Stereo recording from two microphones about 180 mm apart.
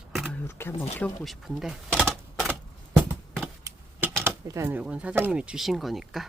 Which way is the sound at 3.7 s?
15° right (ahead or behind).